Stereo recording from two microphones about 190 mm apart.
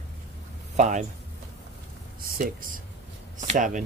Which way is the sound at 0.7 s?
40° right (ahead or behind).